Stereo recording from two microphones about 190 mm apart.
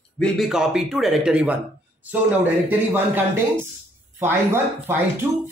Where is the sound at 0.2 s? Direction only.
Centre (ahead or behind).